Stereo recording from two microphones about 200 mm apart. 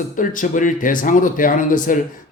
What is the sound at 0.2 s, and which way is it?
Speech, 40° left (ahead or behind).